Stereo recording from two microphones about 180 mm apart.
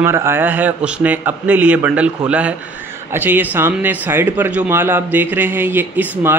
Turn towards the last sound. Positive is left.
turn(degrees=-10)  # may be behind; listen again after turning